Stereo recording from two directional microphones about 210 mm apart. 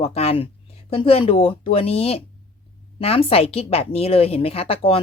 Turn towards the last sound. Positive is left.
turn(degrees=25)  # may be behind; listen again after turning